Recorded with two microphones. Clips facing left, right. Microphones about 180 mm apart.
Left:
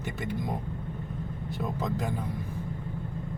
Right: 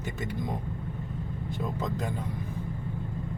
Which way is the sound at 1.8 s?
5° left (ahead or behind).